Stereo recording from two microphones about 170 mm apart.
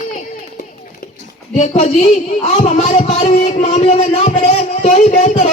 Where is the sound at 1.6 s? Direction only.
40° left (ahead or behind).